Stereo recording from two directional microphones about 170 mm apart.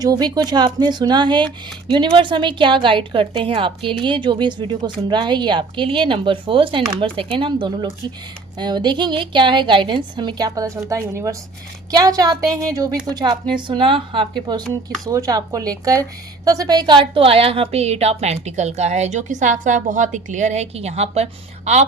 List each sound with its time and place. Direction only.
0.0 s a woman's voice: 25° right (ahead or behind); by 21.8 s 40° right (ahead or behind)